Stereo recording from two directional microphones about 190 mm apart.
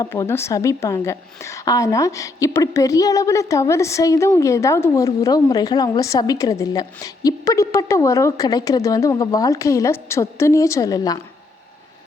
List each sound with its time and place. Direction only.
0.0 s a woman's voice: 15° left (ahead or behind)